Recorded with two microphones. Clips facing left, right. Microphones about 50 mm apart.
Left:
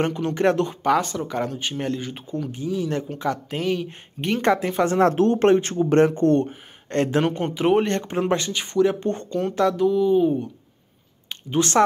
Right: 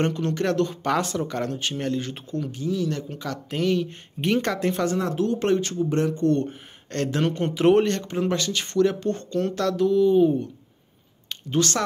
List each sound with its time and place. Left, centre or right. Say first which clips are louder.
0.0 s speech: left 3 dB; centre
0.8 s speech: left 3 dB; centre; by 3.1 s left
3.4 s speech: right 1 dB; centre
5.0 s speech: left 6 dB; left
5.9 s speech: left 6 dB; left
6.4 s speech: left 1 dB; left
7.8 s speech: left 1 dB; left; by 10.5 s centre
11.2 s speech: left 1 dB; left